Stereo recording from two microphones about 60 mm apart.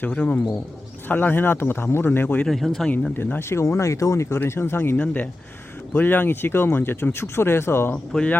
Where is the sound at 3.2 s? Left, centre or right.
Left.